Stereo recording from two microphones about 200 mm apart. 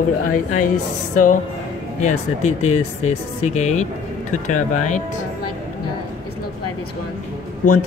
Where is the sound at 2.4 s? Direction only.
35° left (ahead or behind).